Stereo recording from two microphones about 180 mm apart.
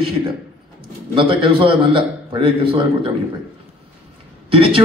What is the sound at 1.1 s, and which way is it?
A man's voice, 30° right (ahead or behind).